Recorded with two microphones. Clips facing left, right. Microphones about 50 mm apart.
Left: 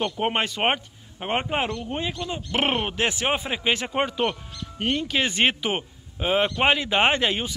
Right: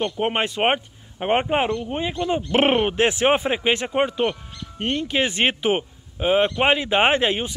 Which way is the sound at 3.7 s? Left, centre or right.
Centre.